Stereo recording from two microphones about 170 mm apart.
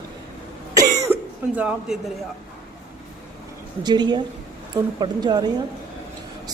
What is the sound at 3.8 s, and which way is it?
Speech, 25° right (ahead or behind).